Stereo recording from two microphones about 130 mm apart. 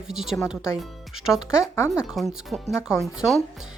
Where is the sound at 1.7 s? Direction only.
20° left (ahead or behind).